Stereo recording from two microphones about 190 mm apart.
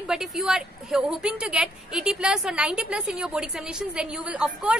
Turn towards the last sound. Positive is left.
turn(degrees=-5)  # may be behind; listen again after turning